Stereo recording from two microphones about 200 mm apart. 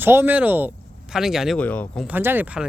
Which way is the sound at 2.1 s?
10° right (ahead or behind).